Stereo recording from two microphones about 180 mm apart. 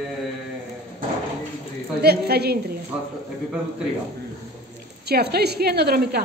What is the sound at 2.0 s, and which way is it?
Speech, 65° right (ahead or behind).